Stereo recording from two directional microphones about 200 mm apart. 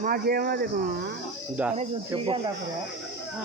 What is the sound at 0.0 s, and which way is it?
Speech, 45° right (ahead or behind).